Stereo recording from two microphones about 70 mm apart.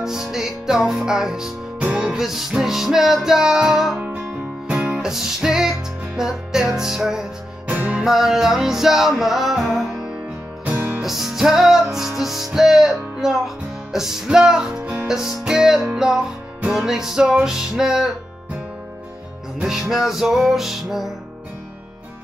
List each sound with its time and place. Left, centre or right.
0.0 s music: centre
4.0 s music: centre
7.6 s music: centre
8.0 s music: centre
11.0 s music: centre
19.6 s music: centre